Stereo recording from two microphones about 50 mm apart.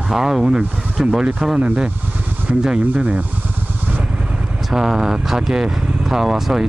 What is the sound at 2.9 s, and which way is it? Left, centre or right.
Speech, right.